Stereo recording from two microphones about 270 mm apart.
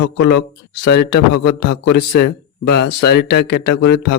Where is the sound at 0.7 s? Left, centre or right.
Left.